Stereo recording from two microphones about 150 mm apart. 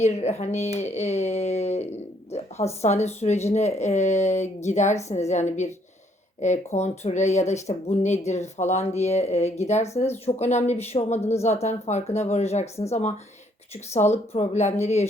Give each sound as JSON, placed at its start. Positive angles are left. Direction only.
{"t": 0.0, "sound": "speech", "side_deg": 45}